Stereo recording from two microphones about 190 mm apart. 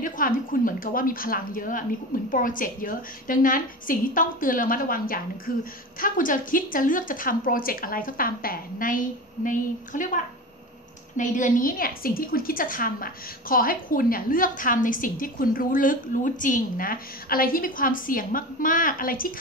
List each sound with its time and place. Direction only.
0.0 s a woman's voice: 45° left (ahead or behind)